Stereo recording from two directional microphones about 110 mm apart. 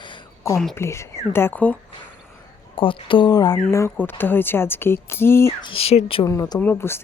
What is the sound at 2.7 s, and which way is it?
Speech, 50° left (ahead or behind).